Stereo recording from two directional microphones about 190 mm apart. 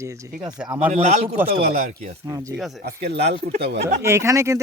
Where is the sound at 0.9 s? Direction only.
35° right (ahead or behind).